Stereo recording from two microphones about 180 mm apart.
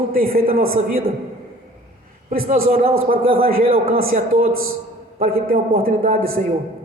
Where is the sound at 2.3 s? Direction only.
50° right (ahead or behind).